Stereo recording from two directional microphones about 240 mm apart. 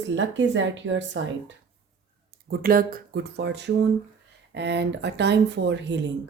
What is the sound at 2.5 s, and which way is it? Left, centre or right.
Speech, right.